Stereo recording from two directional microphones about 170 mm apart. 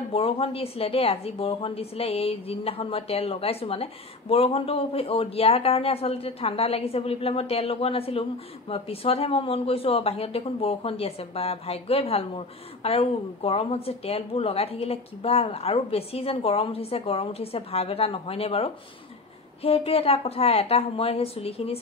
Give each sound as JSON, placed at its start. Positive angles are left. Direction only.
{"t": 0.1, "sound": "speech", "side_deg": 35}